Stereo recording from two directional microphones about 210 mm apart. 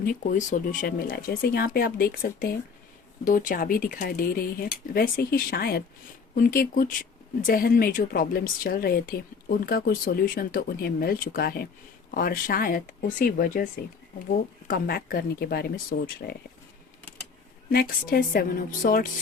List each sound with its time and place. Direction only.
0.0 s speech: 40° left (ahead or behind)
17.7 s speech: 45° left (ahead or behind)